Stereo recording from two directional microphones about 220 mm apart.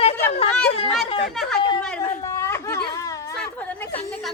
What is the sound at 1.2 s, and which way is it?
Speech, centre (ahead or behind).